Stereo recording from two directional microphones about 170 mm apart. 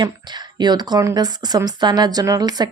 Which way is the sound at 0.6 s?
25° right (ahead or behind).